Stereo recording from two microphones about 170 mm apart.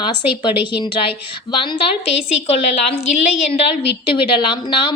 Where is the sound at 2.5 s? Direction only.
35° left (ahead or behind).